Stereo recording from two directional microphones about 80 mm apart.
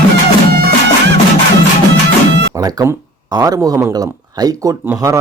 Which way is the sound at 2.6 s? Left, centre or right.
Right.